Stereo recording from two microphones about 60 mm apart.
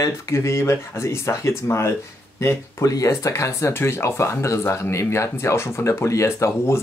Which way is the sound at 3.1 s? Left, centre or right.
Left.